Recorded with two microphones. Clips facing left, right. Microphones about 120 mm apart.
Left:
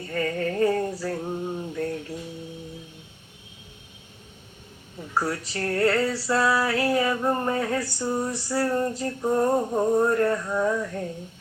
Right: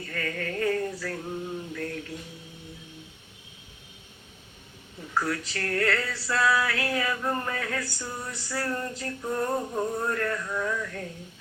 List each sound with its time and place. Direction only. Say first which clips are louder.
0.0 s male singing: left 6 dB; 30° left (ahead or behind)
5.1 s female singing: left 2 dB; 30° left (ahead or behind)